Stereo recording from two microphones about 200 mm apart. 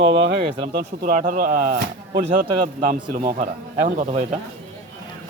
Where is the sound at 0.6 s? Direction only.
50° right (ahead or behind).